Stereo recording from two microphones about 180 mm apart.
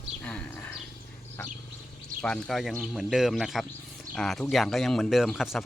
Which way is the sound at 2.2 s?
5° left (ahead or behind).